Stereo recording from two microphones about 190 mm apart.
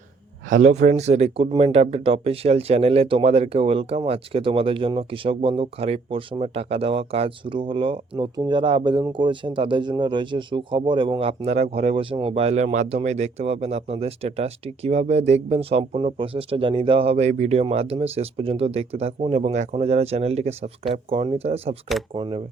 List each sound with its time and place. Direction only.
0.5 s speech: 35° right (ahead or behind)